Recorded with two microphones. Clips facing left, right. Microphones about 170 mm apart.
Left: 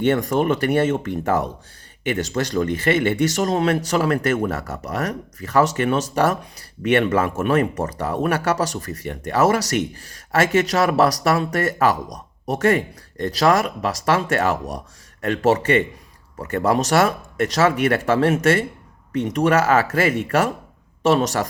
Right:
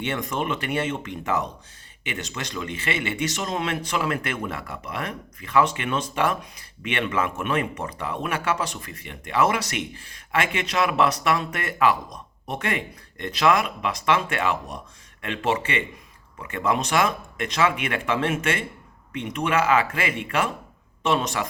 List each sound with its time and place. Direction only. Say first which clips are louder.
0.0 s speech: left 9 dB; 45° left (ahead or behind)